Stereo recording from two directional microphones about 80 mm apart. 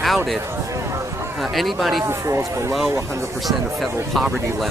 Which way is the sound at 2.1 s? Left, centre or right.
Right.